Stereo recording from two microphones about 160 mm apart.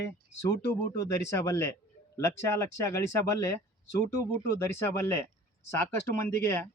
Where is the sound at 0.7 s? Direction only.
20° left (ahead or behind).